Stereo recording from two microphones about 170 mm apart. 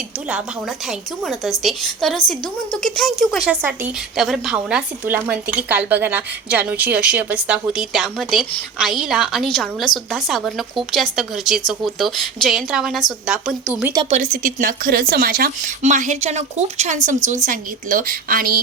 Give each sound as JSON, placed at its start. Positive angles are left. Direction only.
{"t": 0.9, "sound": "speech", "side_deg": 0}
{"t": 14.1, "sound": "speech", "side_deg": -45}
{"t": 15.8, "sound": "a woman's voice", "side_deg": -45}